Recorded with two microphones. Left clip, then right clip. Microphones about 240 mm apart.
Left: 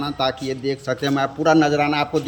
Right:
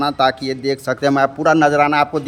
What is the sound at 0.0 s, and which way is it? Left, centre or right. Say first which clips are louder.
A man's voice: right 7 dB; centre.